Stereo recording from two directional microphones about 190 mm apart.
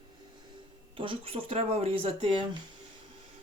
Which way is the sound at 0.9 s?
25° right (ahead or behind).